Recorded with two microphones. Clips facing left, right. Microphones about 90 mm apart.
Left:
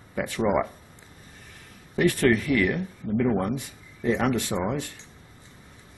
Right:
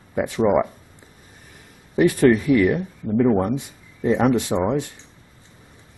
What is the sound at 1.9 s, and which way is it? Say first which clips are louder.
Speech: right 5 dB; 15° right (ahead or behind).